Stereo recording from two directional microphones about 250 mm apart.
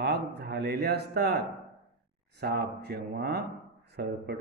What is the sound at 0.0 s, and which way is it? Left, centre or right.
A man's voice, right.